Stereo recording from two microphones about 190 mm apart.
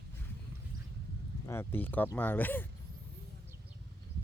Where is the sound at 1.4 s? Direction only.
15° left (ahead or behind).